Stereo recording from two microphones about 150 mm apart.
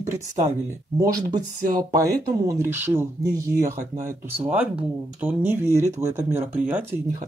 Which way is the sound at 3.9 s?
60° right (ahead or behind).